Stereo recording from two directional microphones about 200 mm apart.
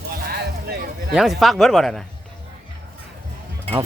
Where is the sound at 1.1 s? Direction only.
Centre (ahead or behind).